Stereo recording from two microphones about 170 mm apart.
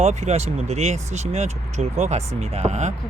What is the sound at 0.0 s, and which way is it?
Speech, 40° right (ahead or behind).